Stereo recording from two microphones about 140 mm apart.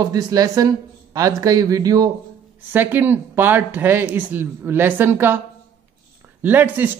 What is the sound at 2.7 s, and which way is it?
Speech, 15° right (ahead or behind).